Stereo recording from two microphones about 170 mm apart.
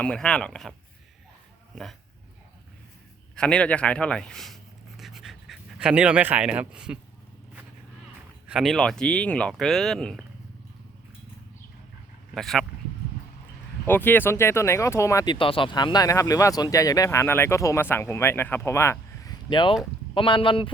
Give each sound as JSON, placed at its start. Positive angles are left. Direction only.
{"t": 0.0, "sound": "speech", "side_deg": 5}
{"t": 3.3, "sound": "speech", "side_deg": 5}
{"t": 8.4, "sound": "speech", "side_deg": 0}
{"t": 12.3, "sound": "speech", "side_deg": 0}
{"t": 13.8, "sound": "speech", "side_deg": 10}